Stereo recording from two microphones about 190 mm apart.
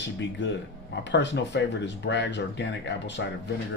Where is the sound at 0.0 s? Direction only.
65° left (ahead or behind).